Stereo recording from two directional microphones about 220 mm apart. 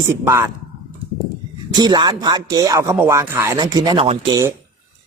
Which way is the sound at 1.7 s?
20° right (ahead or behind).